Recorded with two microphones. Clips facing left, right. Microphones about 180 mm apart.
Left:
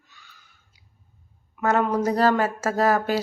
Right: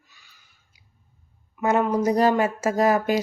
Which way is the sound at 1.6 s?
10° right (ahead or behind).